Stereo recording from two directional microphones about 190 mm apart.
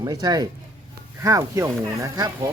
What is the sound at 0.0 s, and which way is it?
Speech, 20° right (ahead or behind).